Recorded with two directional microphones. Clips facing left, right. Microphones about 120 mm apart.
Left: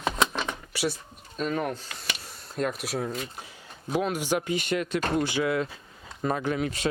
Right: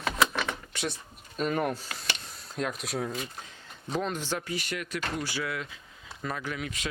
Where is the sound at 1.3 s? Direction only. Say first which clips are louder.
Even; 5° right (ahead or behind).